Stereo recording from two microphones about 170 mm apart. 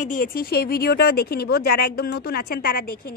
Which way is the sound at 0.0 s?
55° left (ahead or behind).